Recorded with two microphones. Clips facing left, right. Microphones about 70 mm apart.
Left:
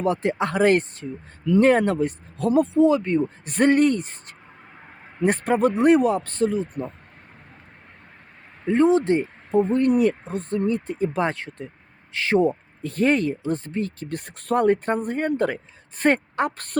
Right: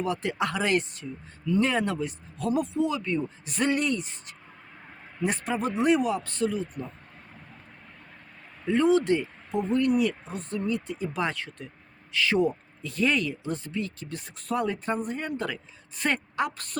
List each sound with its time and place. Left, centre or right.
0.0 s speech: left
8.6 s speech: left
12.8 s speech: left